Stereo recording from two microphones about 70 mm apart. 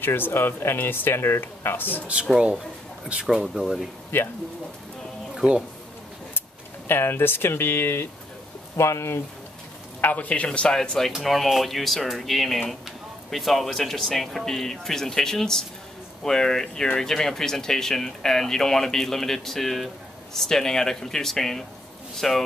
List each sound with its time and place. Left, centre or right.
0.0 s speech: left
2.3 s speech: centre
4.1 s speech: left
5.4 s speech: centre
6.9 s speech: left
10.0 s speech: left; by 22.4 s centre